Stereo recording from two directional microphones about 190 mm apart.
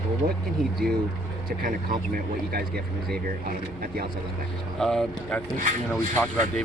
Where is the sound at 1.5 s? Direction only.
50° right (ahead or behind).